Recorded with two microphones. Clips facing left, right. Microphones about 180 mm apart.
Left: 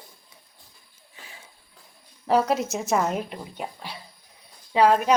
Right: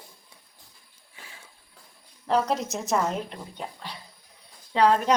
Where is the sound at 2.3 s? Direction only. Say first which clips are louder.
Left 3 dB; 5° left (ahead or behind).